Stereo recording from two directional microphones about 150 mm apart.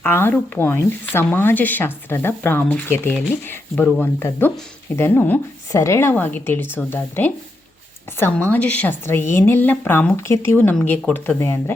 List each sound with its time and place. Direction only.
0.0 s speech: 15° left (ahead or behind)